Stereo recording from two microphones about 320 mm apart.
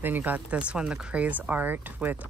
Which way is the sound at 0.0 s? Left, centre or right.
Centre.